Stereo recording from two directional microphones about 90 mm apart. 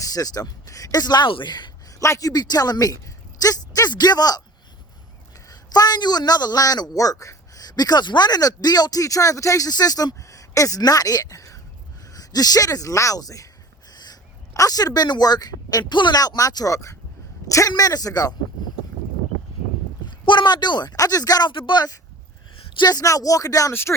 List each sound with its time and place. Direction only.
0.0 s a man's voice: 40° left (ahead or behind)
2.0 s a man's voice: 35° left (ahead or behind)
5.5 s a man's voice: 45° left (ahead or behind)
13.9 s a sound: 50° left (ahead or behind)
14.5 s a man's voice: 40° left (ahead or behind)
20.2 s a man's voice: 55° left (ahead or behind)
20.9 s a man's voice: 40° left (ahead or behind)